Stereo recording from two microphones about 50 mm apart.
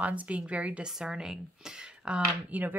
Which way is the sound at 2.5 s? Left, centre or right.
Right.